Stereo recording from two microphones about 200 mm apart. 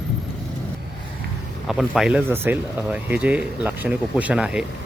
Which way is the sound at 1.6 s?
Centre (ahead or behind).